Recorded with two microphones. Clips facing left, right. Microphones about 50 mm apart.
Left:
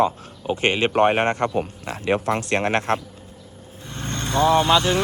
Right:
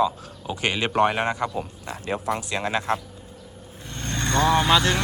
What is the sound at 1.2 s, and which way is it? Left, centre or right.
Speech, left.